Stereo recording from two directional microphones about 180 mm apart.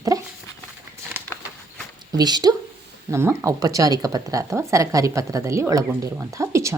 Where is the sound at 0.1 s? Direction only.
20° right (ahead or behind).